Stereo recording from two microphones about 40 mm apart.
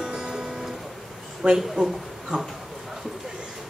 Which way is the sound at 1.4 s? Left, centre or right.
Right.